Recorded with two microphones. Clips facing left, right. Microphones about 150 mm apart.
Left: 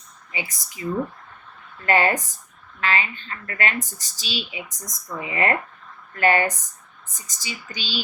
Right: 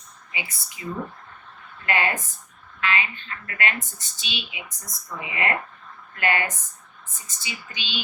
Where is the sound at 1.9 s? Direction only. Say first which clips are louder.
Left 5 dB; 35° left (ahead or behind).